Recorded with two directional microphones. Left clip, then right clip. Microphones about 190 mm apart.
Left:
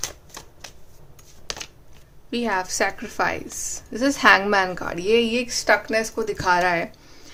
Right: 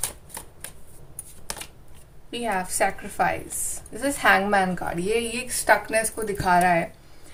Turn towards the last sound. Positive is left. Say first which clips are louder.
# left 1 dB
turn(degrees=45)  # may be behind; listen again after turning